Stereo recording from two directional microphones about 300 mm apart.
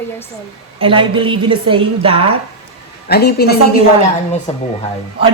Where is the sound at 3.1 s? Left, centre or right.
Left.